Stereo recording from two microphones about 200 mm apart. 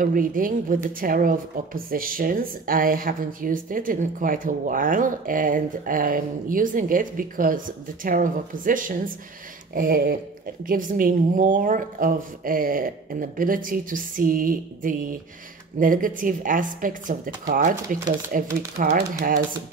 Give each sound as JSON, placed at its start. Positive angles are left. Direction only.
{"t": 0.0, "sound": "speech", "side_deg": -45}